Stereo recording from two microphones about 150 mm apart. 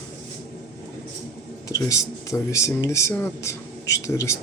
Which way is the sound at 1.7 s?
20° left (ahead or behind).